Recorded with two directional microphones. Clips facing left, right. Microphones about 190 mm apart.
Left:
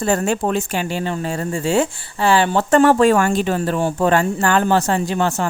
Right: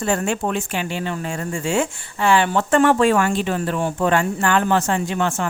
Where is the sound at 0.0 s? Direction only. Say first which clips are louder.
Left 3 dB; 40° left (ahead or behind).